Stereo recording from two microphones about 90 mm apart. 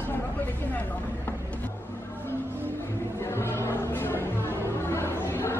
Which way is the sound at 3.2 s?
30° left (ahead or behind).